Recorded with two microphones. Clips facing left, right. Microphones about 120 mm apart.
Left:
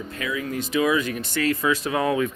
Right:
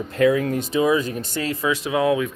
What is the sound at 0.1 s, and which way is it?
Speech, 55° right (ahead or behind).